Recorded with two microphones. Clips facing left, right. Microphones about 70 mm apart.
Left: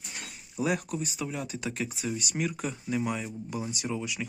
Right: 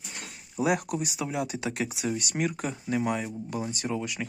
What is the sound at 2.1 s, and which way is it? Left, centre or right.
Speech, right.